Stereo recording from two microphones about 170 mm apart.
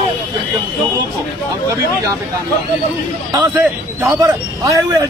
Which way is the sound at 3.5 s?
15° right (ahead or behind).